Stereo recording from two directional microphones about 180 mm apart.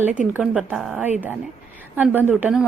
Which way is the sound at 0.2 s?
5° right (ahead or behind).